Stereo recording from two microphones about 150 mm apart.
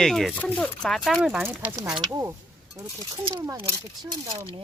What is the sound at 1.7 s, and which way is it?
Speech, 25° right (ahead or behind).